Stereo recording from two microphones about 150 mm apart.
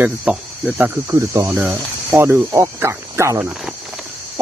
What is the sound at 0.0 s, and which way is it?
Speech, 5° right (ahead or behind).